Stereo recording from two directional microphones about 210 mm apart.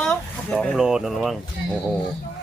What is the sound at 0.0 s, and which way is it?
Speech, 5° left (ahead or behind).